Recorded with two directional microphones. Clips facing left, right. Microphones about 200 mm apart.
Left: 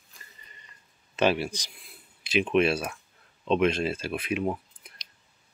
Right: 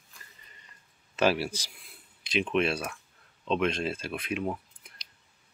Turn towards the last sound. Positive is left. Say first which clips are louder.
# left 3 dB
turn(degrees=5)  # may be behind; listen again after turning